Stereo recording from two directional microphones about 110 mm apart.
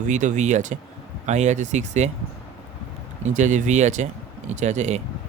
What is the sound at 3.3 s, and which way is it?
Speech, 90° right.